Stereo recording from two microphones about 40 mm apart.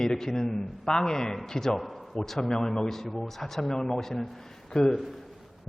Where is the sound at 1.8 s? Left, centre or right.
Centre.